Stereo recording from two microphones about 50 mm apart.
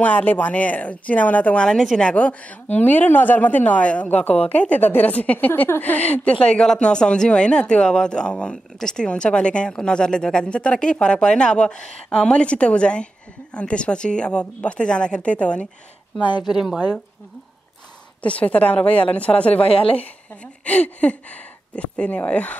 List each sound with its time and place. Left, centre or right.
0.0 s a woman's voice: left
1.6 s a woman's voice: centre
2.1 s a woman's voice: left
6.4 s speech: centre
16.4 s speech: centre
18.2 s speech: left
20.6 s speech: left